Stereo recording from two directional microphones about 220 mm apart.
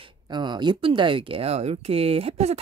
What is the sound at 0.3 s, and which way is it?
Speech, 20° right (ahead or behind).